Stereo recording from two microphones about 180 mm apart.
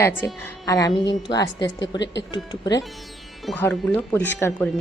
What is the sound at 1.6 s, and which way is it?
Speech, 90° left.